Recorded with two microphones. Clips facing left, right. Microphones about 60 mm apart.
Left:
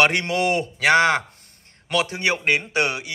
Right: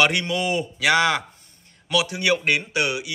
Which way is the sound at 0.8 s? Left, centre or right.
Left.